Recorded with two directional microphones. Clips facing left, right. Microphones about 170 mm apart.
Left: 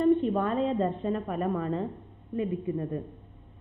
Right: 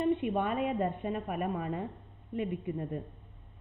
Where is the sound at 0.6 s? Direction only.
10° right (ahead or behind).